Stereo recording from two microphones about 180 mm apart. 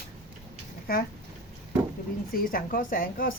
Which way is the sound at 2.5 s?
50° left (ahead or behind).